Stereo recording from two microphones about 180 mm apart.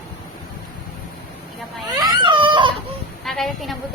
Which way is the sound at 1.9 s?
20° right (ahead or behind).